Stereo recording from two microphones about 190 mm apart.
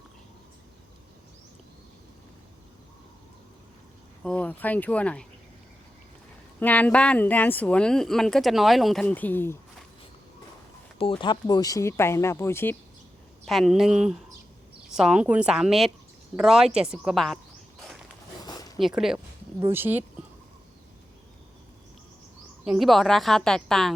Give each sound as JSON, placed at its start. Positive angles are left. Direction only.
{"t": 4.2, "sound": "speech", "side_deg": 5}
{"t": 6.6, "sound": "speech", "side_deg": 10}
{"t": 10.9, "sound": "speech", "side_deg": 25}
{"t": 13.4, "sound": "a woman's voice", "side_deg": 0}
{"t": 18.4, "sound": "a sound", "side_deg": 20}
{"t": 18.8, "sound": "a woman's voice", "side_deg": 0}
{"t": 22.6, "sound": "a woman's voice", "side_deg": 0}